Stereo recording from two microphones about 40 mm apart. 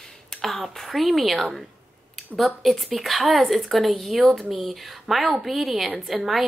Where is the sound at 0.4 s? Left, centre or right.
Centre.